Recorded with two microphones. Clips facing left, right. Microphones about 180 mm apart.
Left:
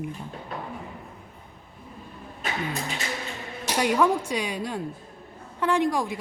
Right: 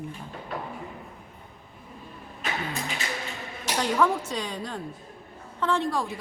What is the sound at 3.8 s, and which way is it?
Speech, 15° left (ahead or behind).